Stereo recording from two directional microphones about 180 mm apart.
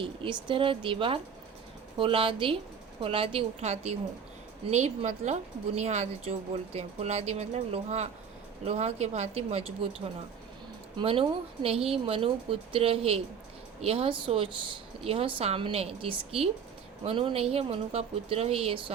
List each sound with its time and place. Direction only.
0.0 s a woman's voice: 30° right (ahead or behind)